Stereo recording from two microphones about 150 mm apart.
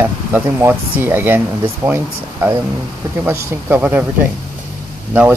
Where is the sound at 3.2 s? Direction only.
10° right (ahead or behind).